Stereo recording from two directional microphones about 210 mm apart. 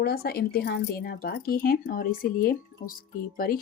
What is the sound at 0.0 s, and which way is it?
Speech, 50° left (ahead or behind).